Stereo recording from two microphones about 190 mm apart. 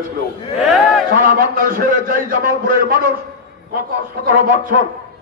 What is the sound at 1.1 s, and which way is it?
A man's voice, 50° right (ahead or behind).